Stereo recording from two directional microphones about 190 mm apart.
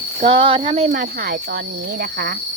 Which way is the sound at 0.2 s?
30° right (ahead or behind).